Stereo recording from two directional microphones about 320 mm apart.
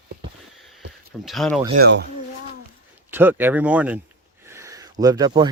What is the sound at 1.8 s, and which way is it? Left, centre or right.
Speech, right.